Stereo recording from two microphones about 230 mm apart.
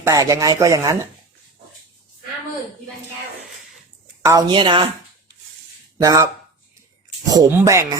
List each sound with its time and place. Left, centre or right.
0.0 s speech: centre
4.2 s a woman's voice: centre
6.0 s speech: centre
7.3 s speech: centre